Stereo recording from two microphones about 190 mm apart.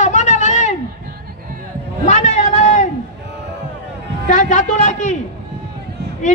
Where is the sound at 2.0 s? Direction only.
40° left (ahead or behind).